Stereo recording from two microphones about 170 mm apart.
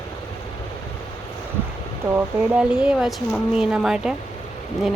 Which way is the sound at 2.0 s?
10° right (ahead or behind).